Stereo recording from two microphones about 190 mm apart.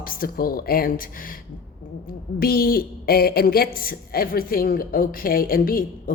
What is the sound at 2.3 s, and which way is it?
A woman's voice, 50° left (ahead or behind).